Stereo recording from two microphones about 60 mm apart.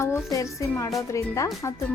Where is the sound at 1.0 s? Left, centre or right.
Left.